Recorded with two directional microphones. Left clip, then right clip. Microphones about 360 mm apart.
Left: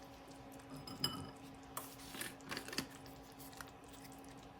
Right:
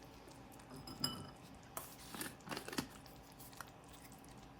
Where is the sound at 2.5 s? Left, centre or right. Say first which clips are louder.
Even; centre.